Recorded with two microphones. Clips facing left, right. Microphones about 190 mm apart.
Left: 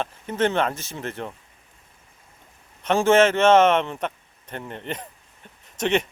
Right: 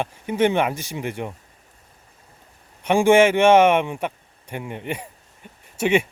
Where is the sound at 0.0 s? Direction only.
10° right (ahead or behind).